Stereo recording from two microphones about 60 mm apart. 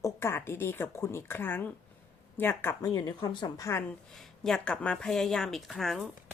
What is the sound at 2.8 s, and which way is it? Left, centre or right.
Speech, left.